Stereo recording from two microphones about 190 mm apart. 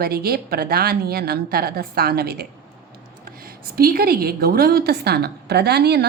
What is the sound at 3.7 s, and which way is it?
A woman's voice, 50° right (ahead or behind).